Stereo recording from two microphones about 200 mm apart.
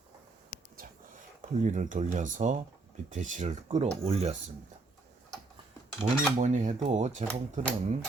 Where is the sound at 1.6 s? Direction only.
40° right (ahead or behind).